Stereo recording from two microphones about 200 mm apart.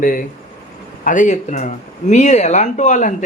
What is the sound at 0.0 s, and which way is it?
Speech, 45° left (ahead or behind).